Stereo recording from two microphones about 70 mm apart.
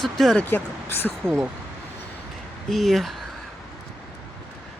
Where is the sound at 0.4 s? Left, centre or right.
Left.